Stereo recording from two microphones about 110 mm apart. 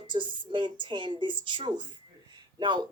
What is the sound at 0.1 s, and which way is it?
A woman's voice, 45° right (ahead or behind).